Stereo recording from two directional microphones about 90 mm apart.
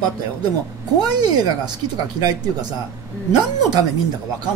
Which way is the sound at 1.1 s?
50° right (ahead or behind).